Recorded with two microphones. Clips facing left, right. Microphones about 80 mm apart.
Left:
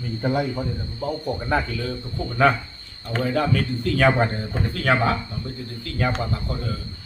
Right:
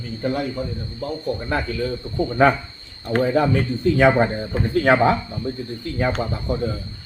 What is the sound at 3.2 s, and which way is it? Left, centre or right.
A man's voice, right.